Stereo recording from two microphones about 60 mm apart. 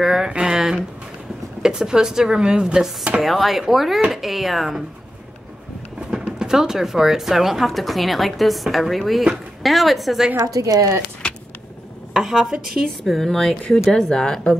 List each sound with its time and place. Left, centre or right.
0.0 s speech: centre
3.2 s speech: centre
5.9 s speech: centre
10.3 s a woman's voice: right
12.1 s speech: centre